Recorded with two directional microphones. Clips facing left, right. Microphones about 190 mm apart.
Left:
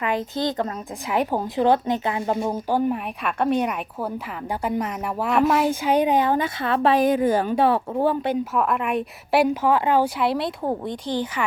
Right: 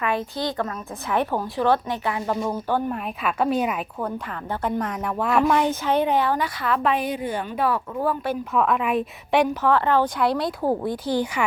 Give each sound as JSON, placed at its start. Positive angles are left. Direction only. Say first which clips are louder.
{"t": 1.1, "sound": "speech", "louder": "left 1 dB", "side_deg": 15}
{"t": 2.6, "sound": "a woman's voice", "louder": "left 5 dB", "side_deg": 10}
{"t": 3.2, "sound": "a woman's voice", "louder": "even", "side_deg": -5}
{"t": 7.0, "sound": "speech", "louder": "left 8 dB", "side_deg": 45}
{"t": 8.5, "sound": "speech", "louder": "right 1 dB", "side_deg": 0}